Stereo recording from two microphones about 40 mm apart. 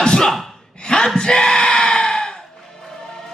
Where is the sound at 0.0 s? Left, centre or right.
Centre.